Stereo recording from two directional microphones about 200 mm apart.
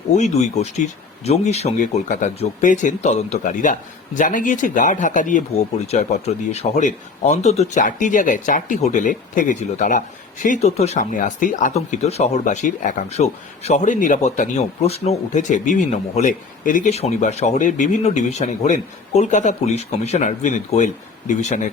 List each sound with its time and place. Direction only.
0.1 s speech: 35° left (ahead or behind)